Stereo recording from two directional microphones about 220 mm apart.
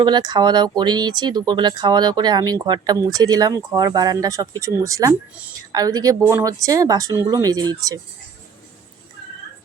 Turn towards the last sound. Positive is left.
turn(degrees=-15)  # may be behind; listen again after turning